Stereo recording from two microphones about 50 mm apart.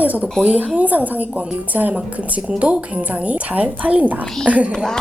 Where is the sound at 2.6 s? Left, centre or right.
Right.